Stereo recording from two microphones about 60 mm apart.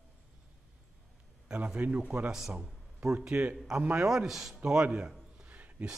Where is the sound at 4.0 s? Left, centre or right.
Centre.